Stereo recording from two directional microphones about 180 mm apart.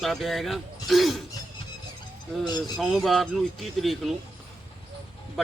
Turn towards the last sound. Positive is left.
turn(degrees=0)  # may be behind; listen again after turning